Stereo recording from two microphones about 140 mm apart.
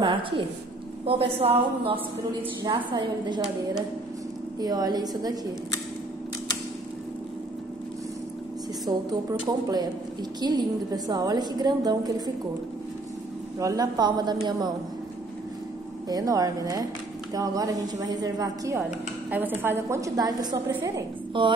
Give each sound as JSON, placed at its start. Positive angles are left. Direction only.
{"t": 0.0, "sound": "a woman's voice", "side_deg": -35}
{"t": 2.6, "sound": "a woman's voice", "side_deg": -30}
{"t": 4.6, "sound": "a woman's voice", "side_deg": -30}
{"t": 8.8, "sound": "a woman's voice", "side_deg": -30}
{"t": 13.6, "sound": "a woman's voice", "side_deg": -25}
{"t": 16.1, "sound": "a woman's voice", "side_deg": -25}
{"t": 20.8, "sound": "a woman's voice", "side_deg": -35}